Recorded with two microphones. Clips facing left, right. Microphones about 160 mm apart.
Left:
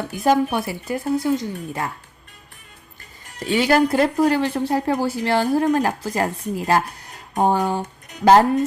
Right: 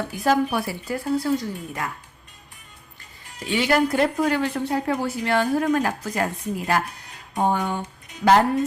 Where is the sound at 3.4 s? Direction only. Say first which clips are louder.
Left 3 dB; 40° left (ahead or behind).